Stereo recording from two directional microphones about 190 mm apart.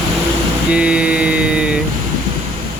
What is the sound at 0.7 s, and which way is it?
Mantra, 5° right (ahead or behind).